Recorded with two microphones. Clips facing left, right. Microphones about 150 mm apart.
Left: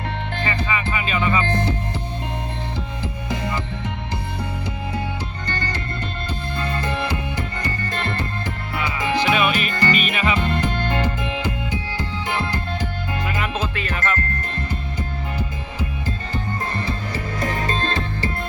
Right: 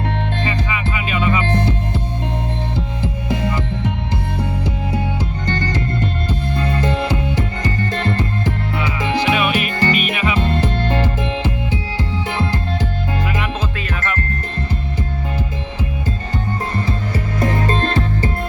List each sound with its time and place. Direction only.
0.4 s music: 15° right (ahead or behind)
3.2 s music: 20° right (ahead or behind)
6.6 s music: 20° right (ahead or behind)
8.8 s music: 10° right (ahead or behind)
10.8 s music: 25° right (ahead or behind)
13.2 s music: 5° right (ahead or behind)
17.4 s music: 45° right (ahead or behind)